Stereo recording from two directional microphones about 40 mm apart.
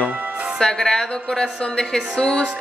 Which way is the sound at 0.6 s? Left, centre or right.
Centre.